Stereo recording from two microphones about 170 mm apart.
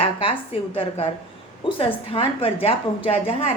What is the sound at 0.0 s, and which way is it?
Speech, 30° left (ahead or behind).